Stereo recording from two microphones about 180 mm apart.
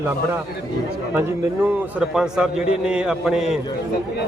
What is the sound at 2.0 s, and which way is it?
A man's voice, 5° right (ahead or behind).